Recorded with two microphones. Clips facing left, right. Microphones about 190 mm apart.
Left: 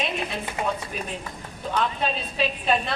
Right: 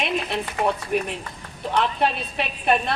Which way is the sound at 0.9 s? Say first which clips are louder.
Right 7 dB; 70° right (ahead or behind).